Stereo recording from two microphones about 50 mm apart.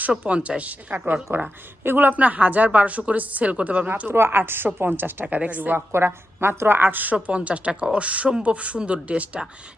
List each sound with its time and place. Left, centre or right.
0.1 s speech: right
0.9 s a woman's voice: right
2.1 s a woman's voice: right
4.1 s a woman's voice: right
5.3 s a woman's voice: right
5.7 s a woman's voice: right